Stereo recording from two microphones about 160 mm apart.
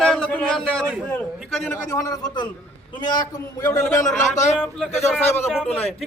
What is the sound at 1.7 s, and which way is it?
A man's voice, 15° left (ahead or behind).